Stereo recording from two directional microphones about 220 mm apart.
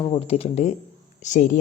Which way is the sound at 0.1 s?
30° left (ahead or behind).